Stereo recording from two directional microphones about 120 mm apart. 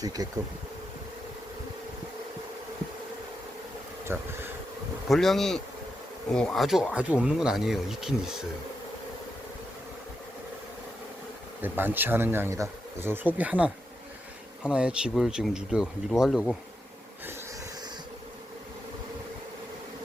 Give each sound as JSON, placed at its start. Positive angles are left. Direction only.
{"t": 0.0, "sound": "speech", "side_deg": -30}
{"t": 4.1, "sound": "speech", "side_deg": -20}
{"t": 5.0, "sound": "speech", "side_deg": 0}
{"t": 11.6, "sound": "speech", "side_deg": -15}